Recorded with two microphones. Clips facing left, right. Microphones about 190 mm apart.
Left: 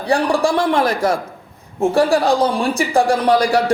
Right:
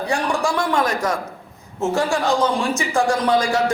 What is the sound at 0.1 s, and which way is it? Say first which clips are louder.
A man's voice: left 7 dB; 35° left (ahead or behind).